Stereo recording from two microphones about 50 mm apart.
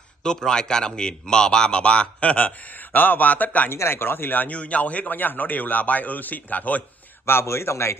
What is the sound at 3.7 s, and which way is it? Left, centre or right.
Speech, left.